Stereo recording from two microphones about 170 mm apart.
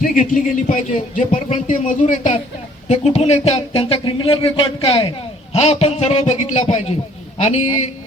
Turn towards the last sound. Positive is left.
turn(degrees=45)  # may be behind; listen again after turning